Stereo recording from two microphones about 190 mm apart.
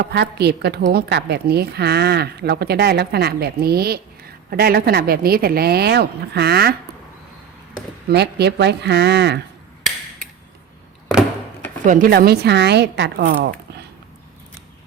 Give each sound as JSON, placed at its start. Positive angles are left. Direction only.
{"t": 0.0, "sound": "a woman's voice", "side_deg": -60}
{"t": 8.1, "sound": "a woman's voice", "side_deg": -60}
{"t": 11.9, "sound": "a woman's voice", "side_deg": -45}